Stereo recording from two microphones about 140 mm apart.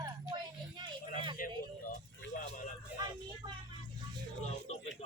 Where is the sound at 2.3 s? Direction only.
75° left (ahead or behind).